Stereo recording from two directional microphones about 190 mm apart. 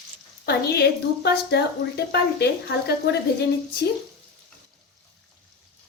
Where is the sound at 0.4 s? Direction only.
60° left (ahead or behind).